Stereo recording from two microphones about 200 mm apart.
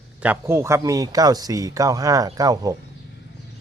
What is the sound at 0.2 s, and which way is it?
Speech, 10° right (ahead or behind).